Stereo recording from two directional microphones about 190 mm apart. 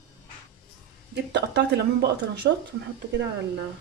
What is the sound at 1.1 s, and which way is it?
A woman's voice, 65° right (ahead or behind).